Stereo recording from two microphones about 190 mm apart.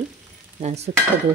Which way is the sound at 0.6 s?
35° right (ahead or behind).